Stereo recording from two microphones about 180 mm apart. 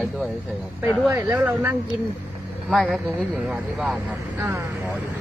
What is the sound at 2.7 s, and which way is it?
Speech, centre (ahead or behind).